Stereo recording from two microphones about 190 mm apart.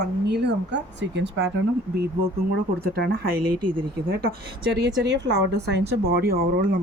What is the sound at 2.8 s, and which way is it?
Speech, 55° right (ahead or behind).